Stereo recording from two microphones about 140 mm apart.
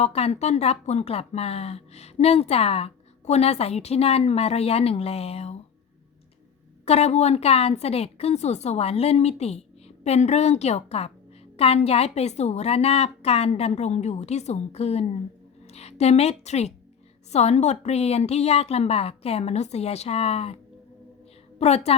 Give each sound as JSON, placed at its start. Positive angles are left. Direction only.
{"t": 0.0, "sound": "speech", "side_deg": 50}
{"t": 6.8, "sound": "a woman's voice", "side_deg": 50}
{"t": 21.6, "sound": "speech", "side_deg": 50}